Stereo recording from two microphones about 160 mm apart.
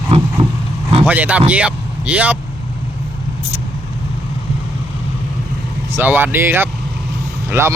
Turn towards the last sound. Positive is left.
turn(degrees=-15)  # may be behind; listen again after turning